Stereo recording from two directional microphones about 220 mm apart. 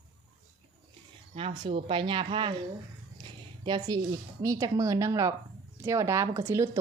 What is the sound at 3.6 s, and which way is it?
Speech, 20° right (ahead or behind).